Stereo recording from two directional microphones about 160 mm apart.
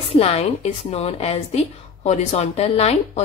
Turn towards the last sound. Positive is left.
turn(degrees=40)  # may be behind; listen again after turning